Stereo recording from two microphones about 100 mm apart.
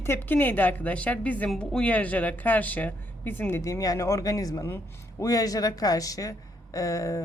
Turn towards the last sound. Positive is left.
turn(degrees=35)  # may be behind; listen again after turning